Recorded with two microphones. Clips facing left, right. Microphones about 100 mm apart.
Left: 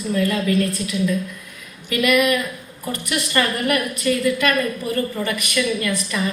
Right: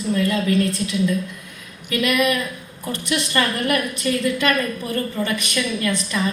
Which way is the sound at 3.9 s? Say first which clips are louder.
Left 2 dB; 30° right (ahead or behind).